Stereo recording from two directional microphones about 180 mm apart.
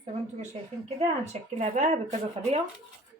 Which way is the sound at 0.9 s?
40° right (ahead or behind).